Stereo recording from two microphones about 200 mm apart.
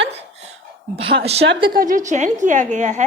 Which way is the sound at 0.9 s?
25° right (ahead or behind).